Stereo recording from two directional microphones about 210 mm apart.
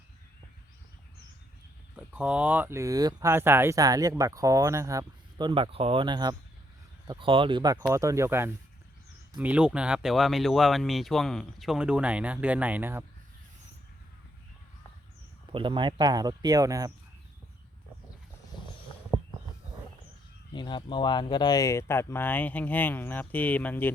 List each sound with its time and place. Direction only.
2.0 s speech: 5° right (ahead or behind)
15.5 s speech: 25° right (ahead or behind)
20.5 s speech: 20° left (ahead or behind)